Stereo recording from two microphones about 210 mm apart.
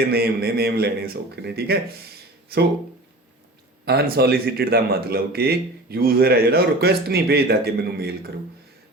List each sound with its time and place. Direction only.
0.1 s a man's voice: 50° right (ahead or behind)
3.8 s a man's voice: 50° right (ahead or behind)